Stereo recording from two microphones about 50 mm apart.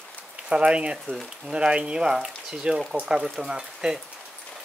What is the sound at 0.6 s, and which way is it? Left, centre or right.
Speech, right.